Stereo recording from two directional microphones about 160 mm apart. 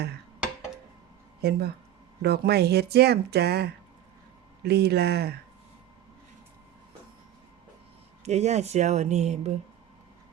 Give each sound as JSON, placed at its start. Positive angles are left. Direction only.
{"t": 1.4, "sound": "speech", "side_deg": -80}
{"t": 8.2, "sound": "speech", "side_deg": -45}